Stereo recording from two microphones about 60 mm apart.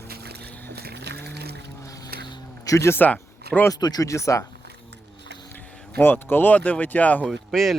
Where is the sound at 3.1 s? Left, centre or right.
Left.